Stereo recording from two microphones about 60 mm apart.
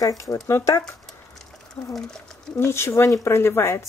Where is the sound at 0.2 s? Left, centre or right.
Left.